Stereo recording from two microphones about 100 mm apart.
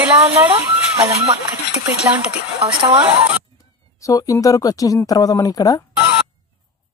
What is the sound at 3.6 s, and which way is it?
Speech, 35° left (ahead or behind).